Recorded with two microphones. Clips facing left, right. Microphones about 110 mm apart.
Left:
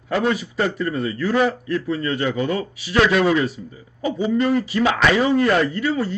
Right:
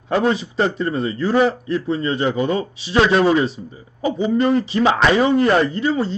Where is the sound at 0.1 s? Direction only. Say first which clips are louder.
Right 3 dB; 30° right (ahead or behind).